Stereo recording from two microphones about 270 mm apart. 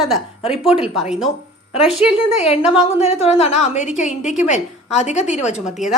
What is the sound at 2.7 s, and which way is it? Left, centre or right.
A woman's voice, left.